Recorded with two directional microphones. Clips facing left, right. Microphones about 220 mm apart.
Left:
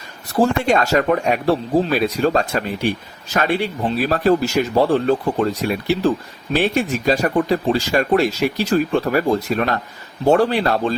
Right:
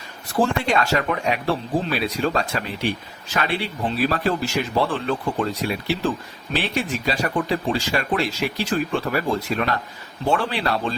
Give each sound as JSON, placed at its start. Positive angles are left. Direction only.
{"t": 0.3, "sound": "speech", "side_deg": 40}